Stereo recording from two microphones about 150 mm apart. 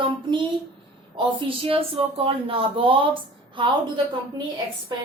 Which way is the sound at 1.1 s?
35° right (ahead or behind).